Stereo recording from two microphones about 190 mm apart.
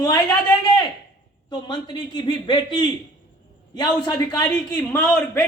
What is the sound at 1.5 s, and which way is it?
A man's voice, 25° left (ahead or behind).